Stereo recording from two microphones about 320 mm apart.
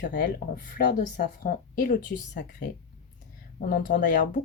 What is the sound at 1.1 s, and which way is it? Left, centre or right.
Speech, left.